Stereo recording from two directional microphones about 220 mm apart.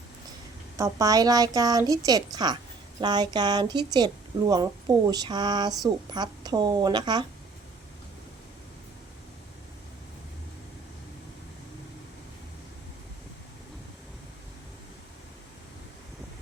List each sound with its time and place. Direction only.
0.8 s a woman's voice: 15° right (ahead or behind)